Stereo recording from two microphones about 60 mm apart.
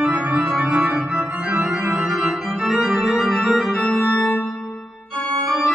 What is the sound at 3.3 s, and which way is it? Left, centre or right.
Organ, centre.